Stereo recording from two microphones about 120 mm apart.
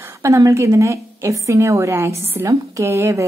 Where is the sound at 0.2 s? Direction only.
25° right (ahead or behind).